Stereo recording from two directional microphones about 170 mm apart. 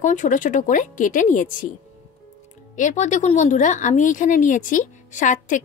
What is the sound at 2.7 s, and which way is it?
A woman's voice, 45° left (ahead or behind).